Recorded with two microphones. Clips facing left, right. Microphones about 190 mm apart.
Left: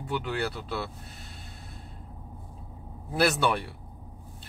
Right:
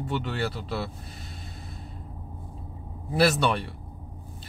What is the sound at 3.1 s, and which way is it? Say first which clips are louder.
Speech: right 2 dB; 5° left (ahead or behind).